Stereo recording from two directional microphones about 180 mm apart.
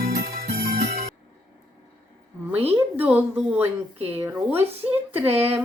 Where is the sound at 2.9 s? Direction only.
10° right (ahead or behind).